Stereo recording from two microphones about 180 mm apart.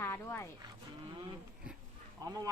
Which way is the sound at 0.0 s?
15° left (ahead or behind).